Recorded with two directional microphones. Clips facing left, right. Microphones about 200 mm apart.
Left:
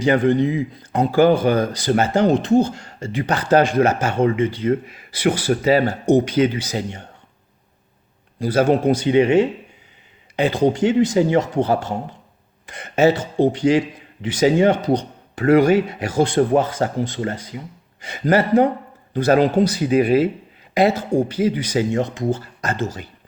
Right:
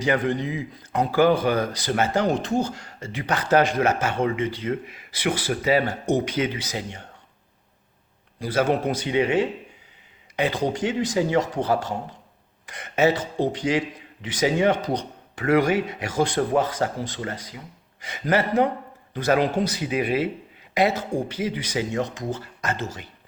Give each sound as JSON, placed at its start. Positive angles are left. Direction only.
{"t": 0.0, "sound": "speech", "side_deg": 30}
{"t": 8.4, "sound": "speech", "side_deg": 30}